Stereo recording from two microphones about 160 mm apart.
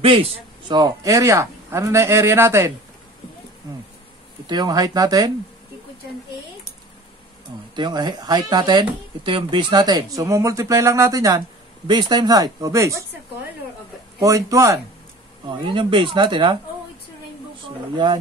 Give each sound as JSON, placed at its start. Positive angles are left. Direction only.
{"t": 0.0, "sound": "a man's voice", "side_deg": -35}
{"t": 4.5, "sound": "speech", "side_deg": -25}
{"t": 7.7, "sound": "speech", "side_deg": -30}
{"t": 14.2, "sound": "speech", "side_deg": -20}
{"t": 15.7, "sound": "speech", "side_deg": -30}